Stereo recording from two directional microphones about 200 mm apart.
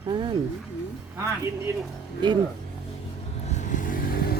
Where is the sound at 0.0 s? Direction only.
25° right (ahead or behind).